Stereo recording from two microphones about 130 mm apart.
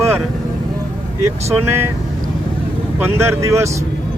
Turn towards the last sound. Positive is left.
turn(degrees=-20)  # may be behind; listen again after turning